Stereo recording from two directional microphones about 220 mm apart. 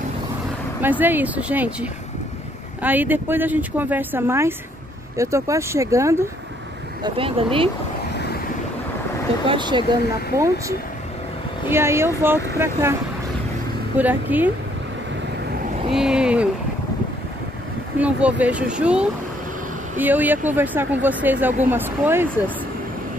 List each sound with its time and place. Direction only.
0.7 s speech: 10° right (ahead or behind)
7.0 s speech: 25° right (ahead or behind)
9.5 s speech: 20° right (ahead or behind)
11.7 s speech: 10° right (ahead or behind)
13.9 s speech: 10° right (ahead or behind)
15.9 s speech: 5° right (ahead or behind)
17.9 s speech: 5° right (ahead or behind)